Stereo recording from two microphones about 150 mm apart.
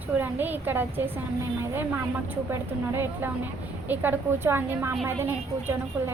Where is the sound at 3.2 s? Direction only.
15° right (ahead or behind).